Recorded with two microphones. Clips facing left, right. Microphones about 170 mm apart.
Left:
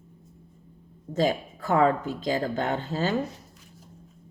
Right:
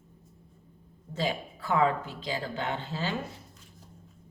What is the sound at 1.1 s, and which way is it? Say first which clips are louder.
Speech: left 7 dB; 45° left (ahead or behind).